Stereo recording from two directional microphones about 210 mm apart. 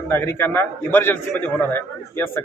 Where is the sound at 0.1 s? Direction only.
10° left (ahead or behind).